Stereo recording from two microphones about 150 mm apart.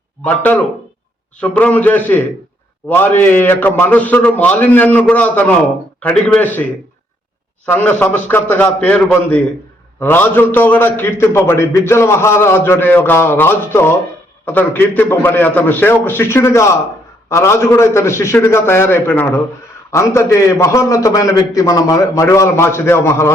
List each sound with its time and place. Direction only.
0.3 s a man's voice: 10° left (ahead or behind)
7.7 s a man's voice: 10° left (ahead or behind)